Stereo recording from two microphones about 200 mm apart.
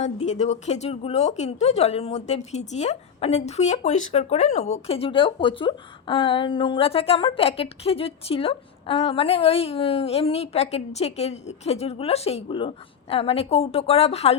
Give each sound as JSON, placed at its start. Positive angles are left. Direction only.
{"t": 0.0, "sound": "speech", "side_deg": 35}